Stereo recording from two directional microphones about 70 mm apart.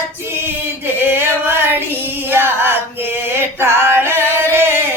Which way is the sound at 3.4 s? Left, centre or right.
Right.